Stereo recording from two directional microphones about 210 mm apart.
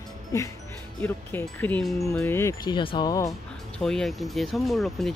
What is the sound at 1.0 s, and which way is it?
Speech, 10° left (ahead or behind).